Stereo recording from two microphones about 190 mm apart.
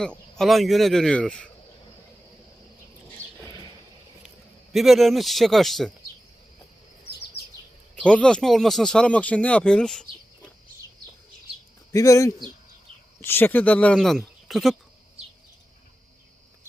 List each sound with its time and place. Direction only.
0.3 s speech: centre (ahead or behind)
4.7 s speech: centre (ahead or behind)
8.0 s speech: 5° left (ahead or behind)
11.9 s speech: 15° left (ahead or behind); by 14.8 s centre (ahead or behind)